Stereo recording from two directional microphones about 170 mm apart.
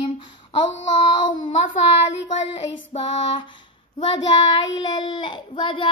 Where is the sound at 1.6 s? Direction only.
40° left (ahead or behind).